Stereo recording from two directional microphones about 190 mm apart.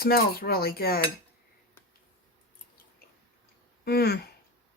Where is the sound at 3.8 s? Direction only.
55° left (ahead or behind).